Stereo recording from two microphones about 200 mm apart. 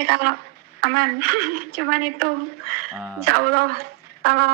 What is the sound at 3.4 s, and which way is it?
Speech, 50° right (ahead or behind).